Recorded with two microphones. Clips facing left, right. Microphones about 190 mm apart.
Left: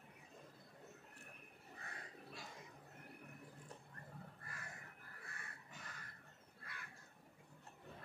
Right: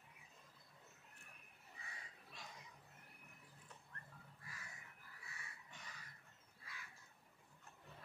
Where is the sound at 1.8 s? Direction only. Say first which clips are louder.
Left 4 dB; 60° left (ahead or behind).